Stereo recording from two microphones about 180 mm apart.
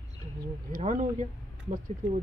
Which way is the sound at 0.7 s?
45° right (ahead or behind).